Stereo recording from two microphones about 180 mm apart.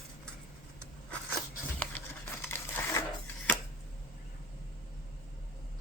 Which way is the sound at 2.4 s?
15° left (ahead or behind).